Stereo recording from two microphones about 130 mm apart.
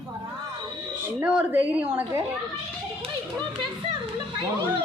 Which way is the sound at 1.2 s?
15° right (ahead or behind).